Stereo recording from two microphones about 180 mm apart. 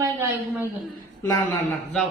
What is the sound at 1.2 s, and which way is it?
Speech, 5° left (ahead or behind).